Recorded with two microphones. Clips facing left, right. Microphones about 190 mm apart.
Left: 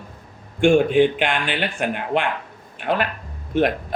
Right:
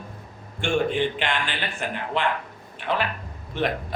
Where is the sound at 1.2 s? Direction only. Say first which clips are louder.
Left 5 dB; 55° left (ahead or behind).